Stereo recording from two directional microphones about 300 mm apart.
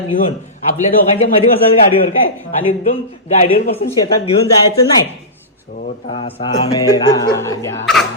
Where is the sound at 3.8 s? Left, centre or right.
Centre.